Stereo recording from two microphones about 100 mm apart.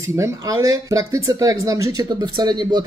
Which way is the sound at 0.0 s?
30° right (ahead or behind).